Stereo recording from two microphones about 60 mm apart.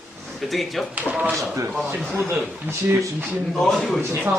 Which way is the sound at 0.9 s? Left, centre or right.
Right.